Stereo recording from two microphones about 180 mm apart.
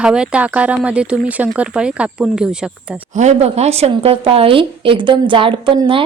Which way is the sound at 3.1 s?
40° right (ahead or behind).